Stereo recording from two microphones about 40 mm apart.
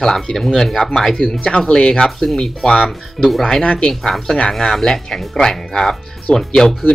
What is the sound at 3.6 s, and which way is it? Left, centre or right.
Speech, left.